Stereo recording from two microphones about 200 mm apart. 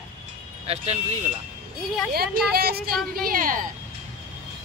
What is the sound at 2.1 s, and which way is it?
Speech, 50° right (ahead or behind).